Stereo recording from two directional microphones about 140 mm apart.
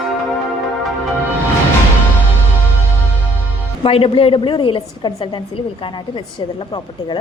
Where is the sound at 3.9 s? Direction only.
40° left (ahead or behind).